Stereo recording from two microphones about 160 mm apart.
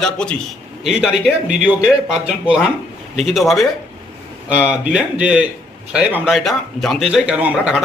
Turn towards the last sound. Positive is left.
turn(degrees=-10)  # may be behind; listen again after turning